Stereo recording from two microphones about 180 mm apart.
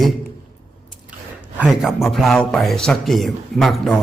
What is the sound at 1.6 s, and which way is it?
A man's voice, 5° right (ahead or behind).